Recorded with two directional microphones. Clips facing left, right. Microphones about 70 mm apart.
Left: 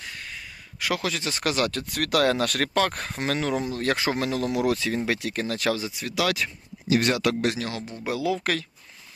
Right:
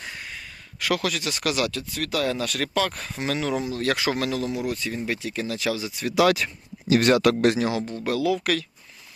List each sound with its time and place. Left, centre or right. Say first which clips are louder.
0.2 s a sound: right 1 dB; centre
0.8 s speech: right 2 dB; left
1.9 s speech: left 3 dB; left
4.5 s speech: left 4 dB; left
5.3 s speech: left 1 dB; left
6.3 s speech: right 1 dB; right
7.7 s speech: right 7 dB; centre
7.9 s speech: left 1 dB; centre